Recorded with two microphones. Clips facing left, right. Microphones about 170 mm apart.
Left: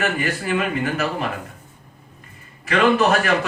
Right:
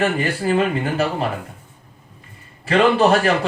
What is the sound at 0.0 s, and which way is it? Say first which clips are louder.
A man's voice: right 4 dB; 30° right (ahead or behind).